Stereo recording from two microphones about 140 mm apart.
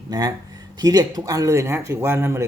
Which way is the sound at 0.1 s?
25° right (ahead or behind).